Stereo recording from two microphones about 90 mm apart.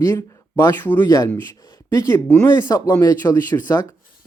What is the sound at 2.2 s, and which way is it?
Speech, 20° left (ahead or behind).